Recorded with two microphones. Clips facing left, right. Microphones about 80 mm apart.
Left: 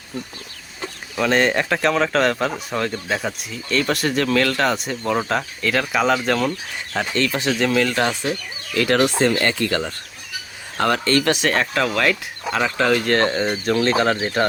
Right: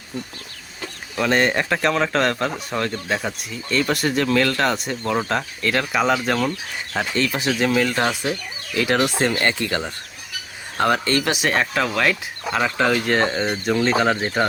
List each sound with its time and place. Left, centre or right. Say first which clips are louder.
1.1 s speech: left 1 dB; centre
9.4 s speech: left 1 dB; right; by 14.4 s centre